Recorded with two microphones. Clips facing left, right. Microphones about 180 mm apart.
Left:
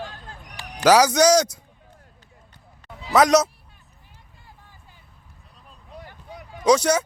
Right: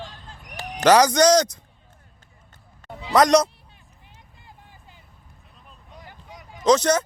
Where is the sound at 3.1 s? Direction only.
5° left (ahead or behind).